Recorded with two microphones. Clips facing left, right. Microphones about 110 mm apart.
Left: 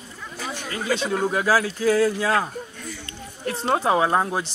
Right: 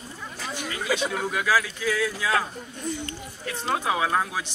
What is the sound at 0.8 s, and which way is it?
Speech, 5° right (ahead or behind).